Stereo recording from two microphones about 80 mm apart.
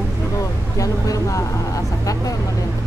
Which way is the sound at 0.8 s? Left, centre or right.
Left.